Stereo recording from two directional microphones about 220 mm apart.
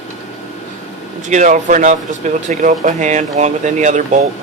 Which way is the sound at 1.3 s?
35° right (ahead or behind).